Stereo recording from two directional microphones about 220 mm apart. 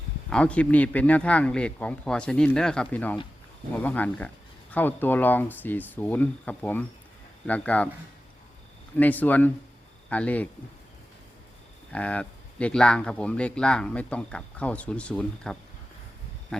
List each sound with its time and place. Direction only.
0.3 s speech: 5° left (ahead or behind)
9.0 s speech: 5° left (ahead or behind)
11.9 s speech: 5° left (ahead or behind)